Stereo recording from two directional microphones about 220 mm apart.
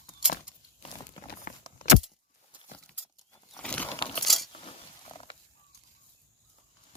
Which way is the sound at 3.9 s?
25° left (ahead or behind).